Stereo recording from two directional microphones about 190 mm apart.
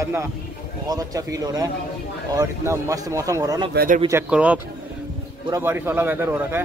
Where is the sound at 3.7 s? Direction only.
45° right (ahead or behind).